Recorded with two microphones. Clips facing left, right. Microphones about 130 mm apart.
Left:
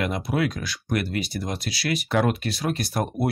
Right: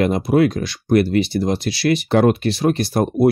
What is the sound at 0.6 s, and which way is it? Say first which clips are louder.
Speech: right 11 dB; 30° right (ahead or behind).